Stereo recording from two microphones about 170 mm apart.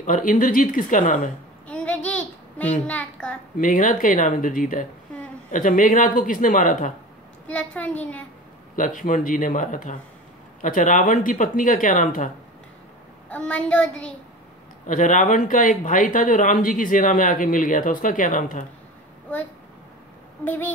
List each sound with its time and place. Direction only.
0.0 s speech: 50° left (ahead or behind)
1.7 s child singing: 10° left (ahead or behind)
2.9 s a child's voice: 5° left (ahead or behind)
3.5 s speech: 50° left (ahead or behind)
7.4 s a child's voice: 10° left (ahead or behind)
8.7 s speech: 50° left (ahead or behind)
13.3 s a child's voice: 5° left (ahead or behind)
14.9 s speech: 50° left (ahead or behind)
20.4 s a child's voice: 10° left (ahead or behind)